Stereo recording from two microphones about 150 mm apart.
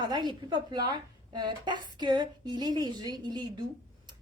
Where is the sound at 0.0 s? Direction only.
30° right (ahead or behind).